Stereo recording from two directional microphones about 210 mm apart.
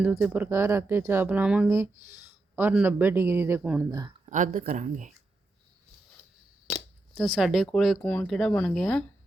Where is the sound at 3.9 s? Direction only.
20° right (ahead or behind).